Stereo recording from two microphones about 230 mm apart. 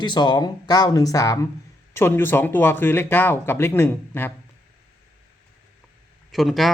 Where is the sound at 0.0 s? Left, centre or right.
Centre.